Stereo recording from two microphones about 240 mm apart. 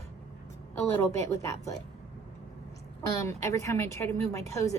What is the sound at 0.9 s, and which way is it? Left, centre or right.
Speech, centre.